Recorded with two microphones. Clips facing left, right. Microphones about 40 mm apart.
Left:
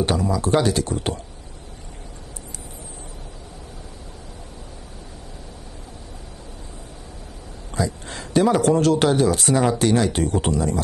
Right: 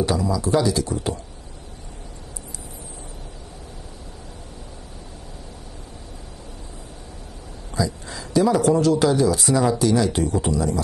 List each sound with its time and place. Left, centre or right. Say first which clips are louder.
0.0 s a man's voice: left 1 dB; left
7.7 s a man's voice: even; left